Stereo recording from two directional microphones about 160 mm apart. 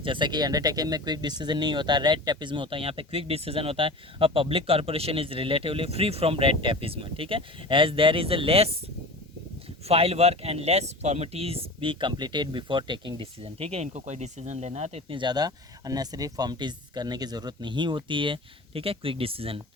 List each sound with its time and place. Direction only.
0.0 s speech: 30° right (ahead or behind)
9.8 s speech: 40° right (ahead or behind)